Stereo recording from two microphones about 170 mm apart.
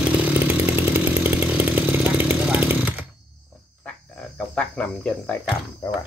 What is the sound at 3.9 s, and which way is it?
Cricket, 5° left (ahead or behind).